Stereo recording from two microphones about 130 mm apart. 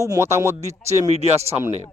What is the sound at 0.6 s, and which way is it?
Speech, 60° right (ahead or behind).